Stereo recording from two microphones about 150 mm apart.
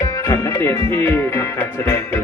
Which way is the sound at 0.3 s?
15° left (ahead or behind).